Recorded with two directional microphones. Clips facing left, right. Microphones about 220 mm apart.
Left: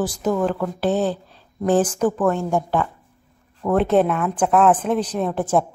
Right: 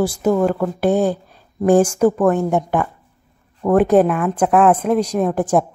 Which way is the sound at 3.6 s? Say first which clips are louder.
Right 4 dB; 10° right (ahead or behind).